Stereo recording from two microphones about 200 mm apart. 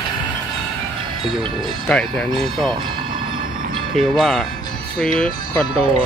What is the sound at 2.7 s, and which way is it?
Vehicle, 25° right (ahead or behind).